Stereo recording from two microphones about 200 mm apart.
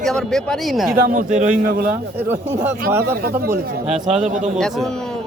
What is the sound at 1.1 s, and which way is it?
Speech, 40° right (ahead or behind).